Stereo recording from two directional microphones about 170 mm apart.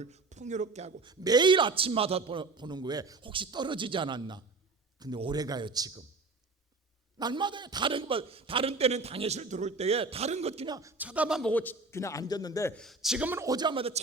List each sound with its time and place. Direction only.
0.0 s speech: 40° right (ahead or behind)
1.0 s a man's voice: 25° right (ahead or behind)
7.2 s a man's voice: 25° right (ahead or behind)
10.7 s a man's voice: 20° right (ahead or behind); by 11.5 s 5° right (ahead or behind)
11.5 s a man's voice: 10° left (ahead or behind)
12.7 s a man's voice: centre (ahead or behind); by 14.0 s 35° right (ahead or behind)